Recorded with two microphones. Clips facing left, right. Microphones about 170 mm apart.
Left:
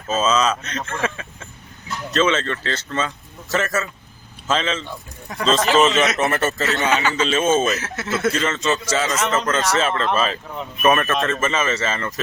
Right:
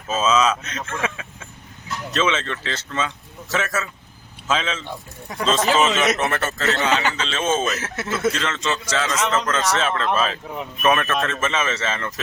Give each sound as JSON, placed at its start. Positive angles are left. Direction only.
{"t": 0.1, "sound": "a man's voice", "side_deg": -5}